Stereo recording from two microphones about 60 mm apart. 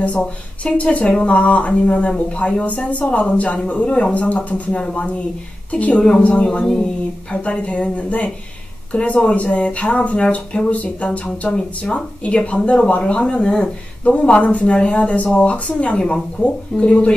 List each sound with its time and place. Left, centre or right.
0.2 s speech: centre